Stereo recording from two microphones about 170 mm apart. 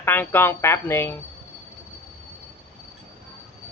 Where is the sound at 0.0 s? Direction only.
10° left (ahead or behind).